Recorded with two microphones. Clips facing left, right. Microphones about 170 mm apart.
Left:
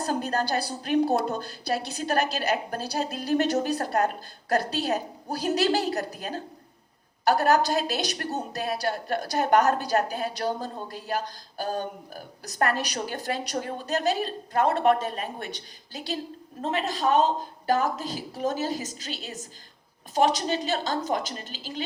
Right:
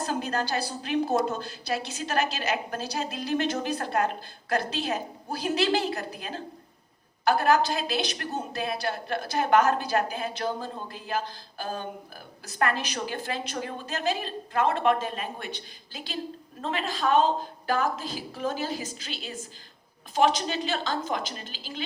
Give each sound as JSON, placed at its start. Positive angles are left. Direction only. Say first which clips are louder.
{"t": 0.0, "sound": "a woman's voice", "louder": "left 2 dB", "side_deg": 40}
{"t": 16.6, "sound": "a woman's voice", "louder": "left 2 dB", "side_deg": 40}
{"t": 18.3, "sound": "a woman's voice", "louder": "left 3 dB", "side_deg": 45}